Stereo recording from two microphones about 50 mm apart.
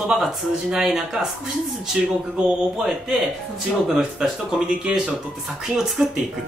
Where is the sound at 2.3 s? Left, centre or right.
Centre.